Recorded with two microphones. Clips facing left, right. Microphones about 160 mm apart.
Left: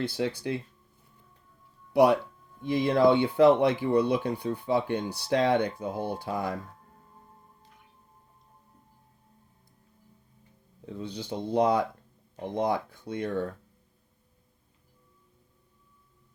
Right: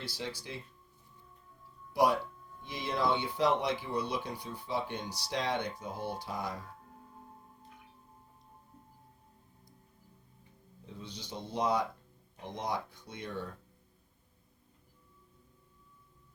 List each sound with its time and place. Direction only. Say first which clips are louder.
0.1 s speech: left 11 dB; 60° left (ahead or behind)
1.9 s speech: left 7 dB; 60° left (ahead or behind)
10.9 s speech: left 9 dB; 55° left (ahead or behind)